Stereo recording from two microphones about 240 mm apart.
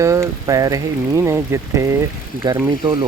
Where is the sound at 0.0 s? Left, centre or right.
Centre.